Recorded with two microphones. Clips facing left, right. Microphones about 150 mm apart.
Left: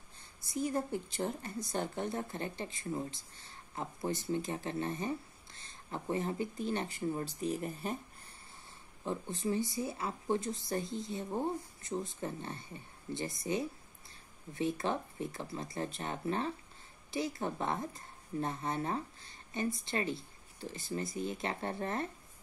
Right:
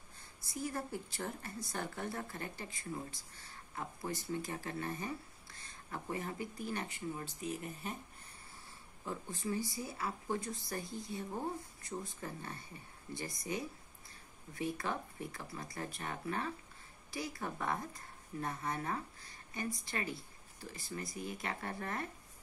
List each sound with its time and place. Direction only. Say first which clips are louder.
0.4 s a woman's voice: left 6 dB; 20° left (ahead or behind); by 7.9 s 35° left (ahead or behind)
9.0 s a woman's voice: left 5 dB; 25° left (ahead or behind)